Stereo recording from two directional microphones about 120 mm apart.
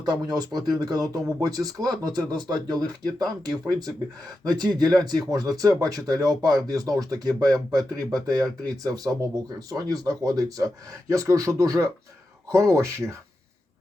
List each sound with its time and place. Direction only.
0.0 s speech: 35° right (ahead or behind)